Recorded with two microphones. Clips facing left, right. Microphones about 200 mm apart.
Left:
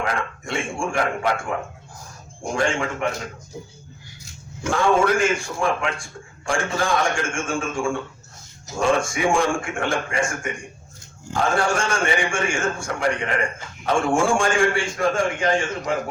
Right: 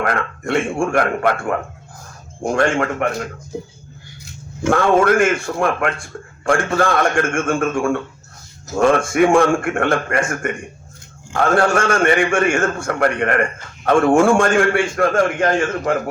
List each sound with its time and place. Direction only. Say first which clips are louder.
0.0 s a man's voice: right 5 dB; 60° right (ahead or behind)
4.7 s a man's voice: right 5 dB; 60° right (ahead or behind)